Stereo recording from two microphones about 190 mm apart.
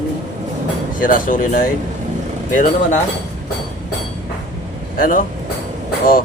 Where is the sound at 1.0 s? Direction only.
45° left (ahead or behind).